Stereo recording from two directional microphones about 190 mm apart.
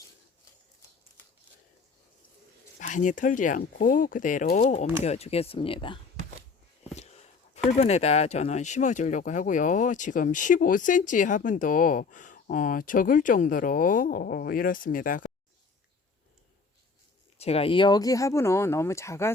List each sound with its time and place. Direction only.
2.7 s speech: 40° left (ahead or behind)
6.9 s a sound: 35° left (ahead or behind)
7.7 s speech: 35° left (ahead or behind)
17.3 s speech: 30° left (ahead or behind); by 19.3 s 15° left (ahead or behind)